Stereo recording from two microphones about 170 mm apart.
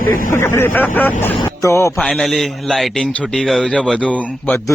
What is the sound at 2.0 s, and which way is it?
A man's voice, 5° left (ahead or behind).